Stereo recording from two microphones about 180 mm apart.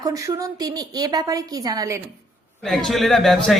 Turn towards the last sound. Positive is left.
turn(degrees=0)  # may be behind; listen again after turning